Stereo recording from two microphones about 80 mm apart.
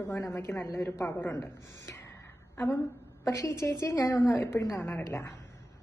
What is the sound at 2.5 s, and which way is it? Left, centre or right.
A woman's voice, left.